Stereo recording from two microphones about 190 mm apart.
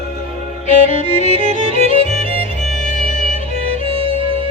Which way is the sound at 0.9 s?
40° left (ahead or behind).